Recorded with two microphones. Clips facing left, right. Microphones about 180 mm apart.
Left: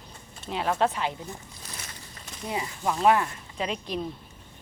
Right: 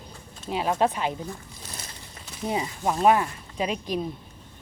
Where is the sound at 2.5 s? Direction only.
25° right (ahead or behind).